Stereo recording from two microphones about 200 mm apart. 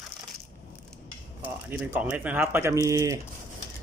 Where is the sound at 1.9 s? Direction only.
10° right (ahead or behind).